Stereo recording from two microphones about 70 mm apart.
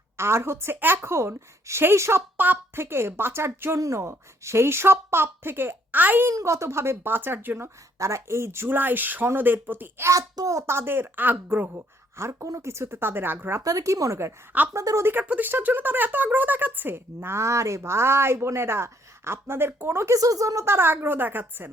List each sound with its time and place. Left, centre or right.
0.2 s speech: right
2.4 s a woman's voice: right
3.8 s speech: right
6.2 s speech: right
7.9 s speech: right
10.1 s speech: right
10.8 s a woman's voice: right
11.7 s speech: right
13.6 s speech: right
15.1 s a woman's voice: right
20.1 s speech: right
20.7 s a woman's voice: right